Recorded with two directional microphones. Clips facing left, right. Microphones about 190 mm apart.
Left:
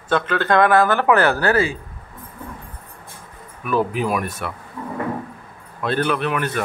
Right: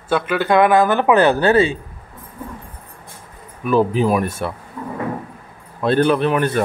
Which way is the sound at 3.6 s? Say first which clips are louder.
Right 5 dB; 30° right (ahead or behind).